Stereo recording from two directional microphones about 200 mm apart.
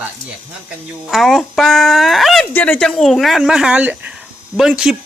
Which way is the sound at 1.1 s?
Centre (ahead or behind).